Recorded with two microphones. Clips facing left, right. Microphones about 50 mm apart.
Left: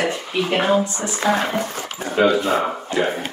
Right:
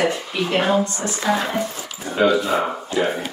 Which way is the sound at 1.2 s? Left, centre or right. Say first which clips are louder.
Left 2 dB; left.